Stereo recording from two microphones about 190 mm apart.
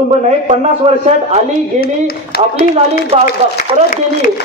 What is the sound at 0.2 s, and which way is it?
A man's voice, 35° right (ahead or behind).